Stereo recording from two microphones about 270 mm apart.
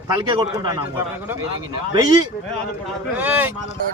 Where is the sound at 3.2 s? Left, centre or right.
Centre.